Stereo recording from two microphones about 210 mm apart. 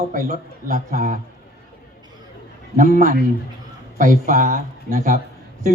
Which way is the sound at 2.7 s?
40° right (ahead or behind).